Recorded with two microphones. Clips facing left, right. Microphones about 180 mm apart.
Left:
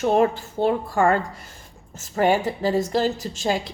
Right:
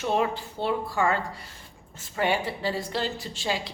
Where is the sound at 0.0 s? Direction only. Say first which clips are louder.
Left 7 dB; 45° left (ahead or behind).